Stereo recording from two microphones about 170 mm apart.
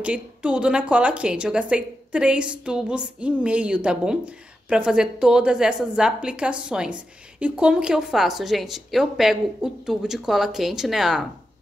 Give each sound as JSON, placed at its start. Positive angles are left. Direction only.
{"t": 0.0, "sound": "a woman's voice", "side_deg": -5}